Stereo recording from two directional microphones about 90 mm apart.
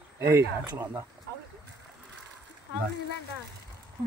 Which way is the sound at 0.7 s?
30° right (ahead or behind).